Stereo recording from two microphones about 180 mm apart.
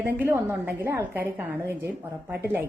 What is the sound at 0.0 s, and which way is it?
A woman's voice, 10° right (ahead or behind).